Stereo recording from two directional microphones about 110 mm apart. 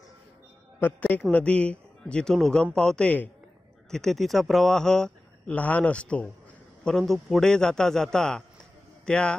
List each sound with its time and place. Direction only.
0.7 s a man's voice: 15° left (ahead or behind)